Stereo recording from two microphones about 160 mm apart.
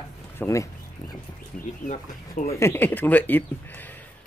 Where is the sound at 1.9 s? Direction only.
50° left (ahead or behind).